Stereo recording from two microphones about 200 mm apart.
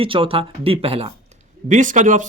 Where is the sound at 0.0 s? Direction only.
25° right (ahead or behind).